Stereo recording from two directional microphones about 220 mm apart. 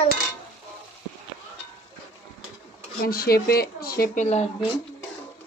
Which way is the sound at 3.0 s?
45° left (ahead or behind).